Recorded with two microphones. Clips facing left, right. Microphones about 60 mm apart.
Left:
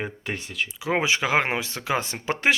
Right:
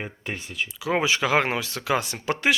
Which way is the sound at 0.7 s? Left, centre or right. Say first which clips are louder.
Even; left.